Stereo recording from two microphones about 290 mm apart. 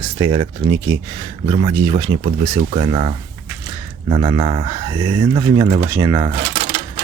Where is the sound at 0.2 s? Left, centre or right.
Centre.